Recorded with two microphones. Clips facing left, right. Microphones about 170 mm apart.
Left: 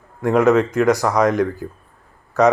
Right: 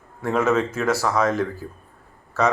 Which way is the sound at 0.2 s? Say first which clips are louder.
Left 6 dB; 15° left (ahead or behind).